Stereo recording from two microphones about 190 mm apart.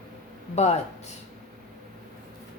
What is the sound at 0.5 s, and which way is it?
Speech, 35° left (ahead or behind).